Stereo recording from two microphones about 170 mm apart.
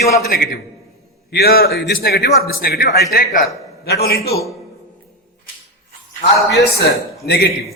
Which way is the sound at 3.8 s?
70° left (ahead or behind).